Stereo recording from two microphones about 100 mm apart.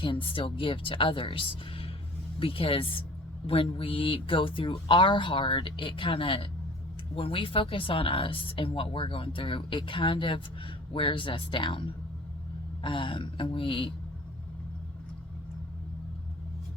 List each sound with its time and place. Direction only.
0.0 s speech: 60° left (ahead or behind)